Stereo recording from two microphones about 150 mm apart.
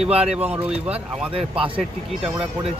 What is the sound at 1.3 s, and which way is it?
Speech, 35° right (ahead or behind).